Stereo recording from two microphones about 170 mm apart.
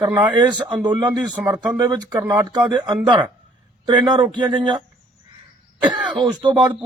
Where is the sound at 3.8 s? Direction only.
25° right (ahead or behind).